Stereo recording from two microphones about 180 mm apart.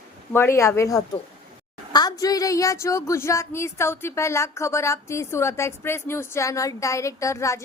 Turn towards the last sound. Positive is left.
turn(degrees=15)  # may be behind; listen again after turning